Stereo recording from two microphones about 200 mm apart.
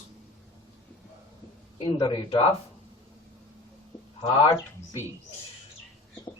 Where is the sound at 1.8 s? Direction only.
25° left (ahead or behind).